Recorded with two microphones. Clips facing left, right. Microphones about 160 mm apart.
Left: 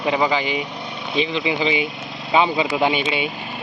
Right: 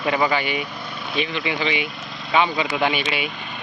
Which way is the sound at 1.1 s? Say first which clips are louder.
Left 4 dB; 25° left (ahead or behind).